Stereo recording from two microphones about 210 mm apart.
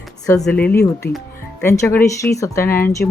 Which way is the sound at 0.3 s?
5° left (ahead or behind).